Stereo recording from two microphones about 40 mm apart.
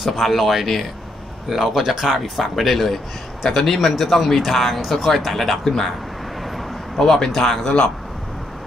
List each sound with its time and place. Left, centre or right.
0.1 s speech: centre
7.0 s a man's voice: centre
7.6 s speech: left